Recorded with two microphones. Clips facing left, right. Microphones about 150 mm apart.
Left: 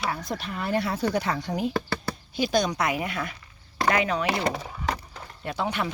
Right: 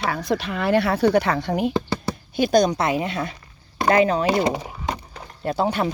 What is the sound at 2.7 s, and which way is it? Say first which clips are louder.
A woman's voice: right 5 dB; 30° right (ahead or behind).